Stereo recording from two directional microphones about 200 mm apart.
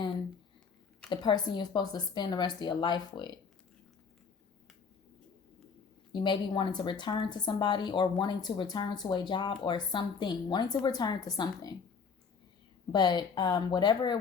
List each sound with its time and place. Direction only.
1.1 s speech: 20° left (ahead or behind)
6.1 s speech: 25° left (ahead or behind)
12.9 s speech: 20° left (ahead or behind)